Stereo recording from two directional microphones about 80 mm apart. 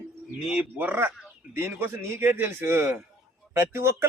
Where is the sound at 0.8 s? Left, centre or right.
Right.